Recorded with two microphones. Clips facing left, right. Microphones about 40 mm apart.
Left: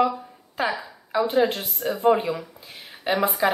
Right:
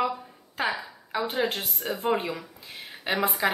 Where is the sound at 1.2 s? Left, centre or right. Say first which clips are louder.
Left 6 dB; centre.